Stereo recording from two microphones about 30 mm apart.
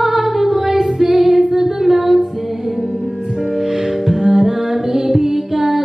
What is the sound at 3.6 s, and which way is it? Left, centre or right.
Music, centre.